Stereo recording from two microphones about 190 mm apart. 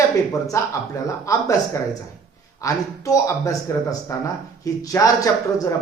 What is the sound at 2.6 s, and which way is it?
A man's voice, 15° left (ahead or behind).